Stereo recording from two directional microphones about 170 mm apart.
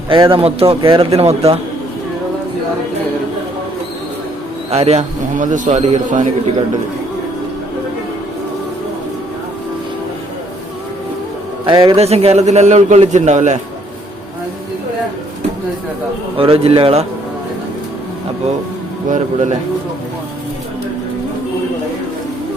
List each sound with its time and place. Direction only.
0.1 s a man's voice: 30° right (ahead or behind)
4.7 s a man's voice: 35° right (ahead or behind)
11.6 s a man's voice: 25° right (ahead or behind); by 13.6 s 45° right (ahead or behind)
16.4 s a man's voice: 35° right (ahead or behind)
19.0 s a man's voice: 45° right (ahead or behind)